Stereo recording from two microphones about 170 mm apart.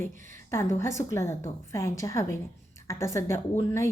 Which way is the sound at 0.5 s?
15° left (ahead or behind).